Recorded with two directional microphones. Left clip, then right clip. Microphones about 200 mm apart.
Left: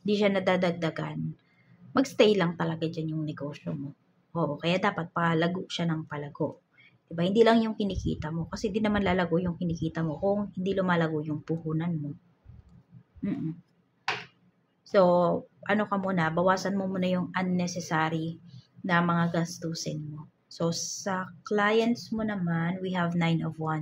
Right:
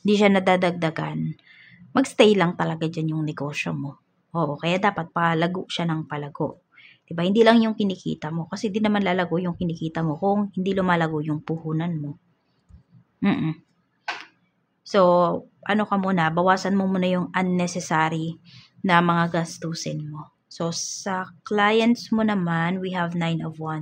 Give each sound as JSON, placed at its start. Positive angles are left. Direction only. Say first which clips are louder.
{"t": 0.0, "sound": "a woman's voice", "louder": "right 7 dB", "side_deg": -30}
{"t": 14.9, "sound": "a woman's voice", "louder": "right 5 dB", "side_deg": -20}